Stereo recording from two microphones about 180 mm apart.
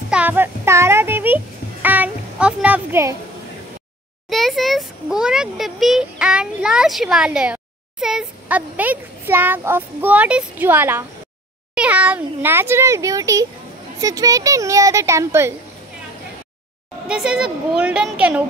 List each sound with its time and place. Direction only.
0.1 s music: 10° right (ahead or behind)
4.3 s a child's voice: centre (ahead or behind)
17.1 s a child's voice: 5° right (ahead or behind)